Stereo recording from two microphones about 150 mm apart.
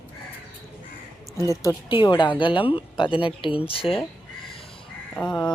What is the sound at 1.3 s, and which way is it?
Speech, 20° right (ahead or behind).